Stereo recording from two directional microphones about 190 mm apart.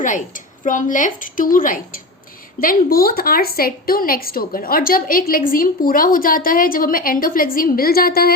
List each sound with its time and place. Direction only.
0.0 s a woman's voice: 45° left (ahead or behind)